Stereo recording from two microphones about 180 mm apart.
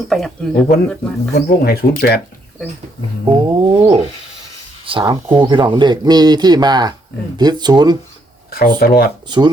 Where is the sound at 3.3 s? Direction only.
25° right (ahead or behind).